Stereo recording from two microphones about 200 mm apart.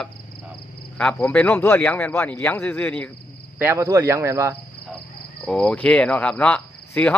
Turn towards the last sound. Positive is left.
turn(degrees=5)  # may be behind; listen again after turning